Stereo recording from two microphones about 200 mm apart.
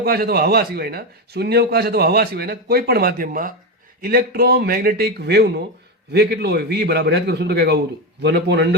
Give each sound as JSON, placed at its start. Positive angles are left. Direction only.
{"t": 0.0, "sound": "a man's voice", "side_deg": -50}